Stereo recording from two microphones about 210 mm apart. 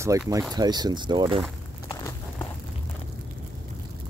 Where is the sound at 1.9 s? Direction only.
15° left (ahead or behind).